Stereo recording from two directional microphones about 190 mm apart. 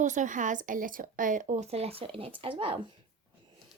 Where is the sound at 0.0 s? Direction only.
40° right (ahead or behind).